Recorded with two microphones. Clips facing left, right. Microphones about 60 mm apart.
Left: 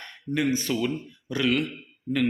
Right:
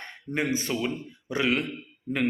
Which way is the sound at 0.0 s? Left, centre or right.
Right.